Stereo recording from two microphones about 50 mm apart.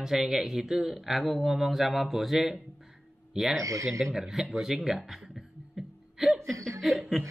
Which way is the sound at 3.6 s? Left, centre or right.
Right.